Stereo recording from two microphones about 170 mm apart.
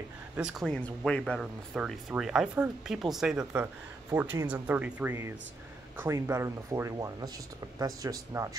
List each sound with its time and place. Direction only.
0.4 s speech: centre (ahead or behind); by 8.5 s 20° right (ahead or behind)